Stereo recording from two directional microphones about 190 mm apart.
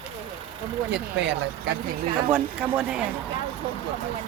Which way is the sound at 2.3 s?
10° right (ahead or behind).